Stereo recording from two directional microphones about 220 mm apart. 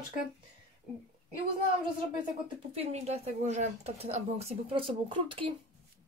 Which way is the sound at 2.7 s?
30° right (ahead or behind).